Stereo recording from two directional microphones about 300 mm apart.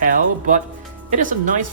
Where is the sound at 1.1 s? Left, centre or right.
Right.